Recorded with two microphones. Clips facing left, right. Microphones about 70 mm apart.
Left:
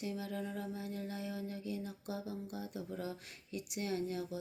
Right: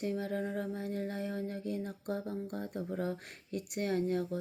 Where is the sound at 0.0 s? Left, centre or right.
Right.